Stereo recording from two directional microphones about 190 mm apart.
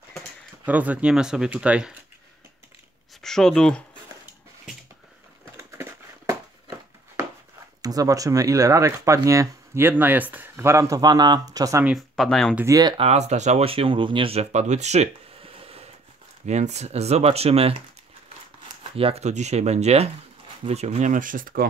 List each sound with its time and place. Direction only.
0.7 s speech: 10° right (ahead or behind)
3.2 s speech: centre (ahead or behind)
5.6 s a sound: 15° right (ahead or behind)
7.8 s speech: 20° right (ahead or behind)
11.8 s speech: centre (ahead or behind)
12.5 s speech: 15° right (ahead or behind)
18.9 s speech: 30° right (ahead or behind)